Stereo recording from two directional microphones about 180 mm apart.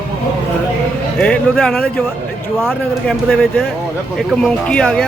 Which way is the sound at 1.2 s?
5° left (ahead or behind).